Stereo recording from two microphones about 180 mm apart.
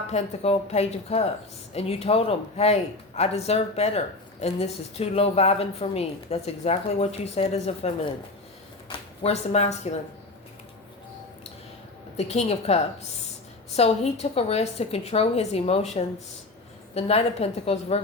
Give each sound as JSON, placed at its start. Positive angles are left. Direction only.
{"t": 0.1, "sound": "speech", "side_deg": 35}
{"t": 8.9, "sound": "speech", "side_deg": 35}
{"t": 12.1, "sound": "speech", "side_deg": 35}